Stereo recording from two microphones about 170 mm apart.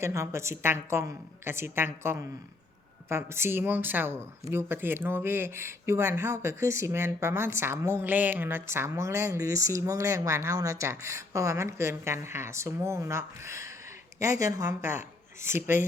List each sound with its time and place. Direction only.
0.0 s speech: 15° right (ahead or behind)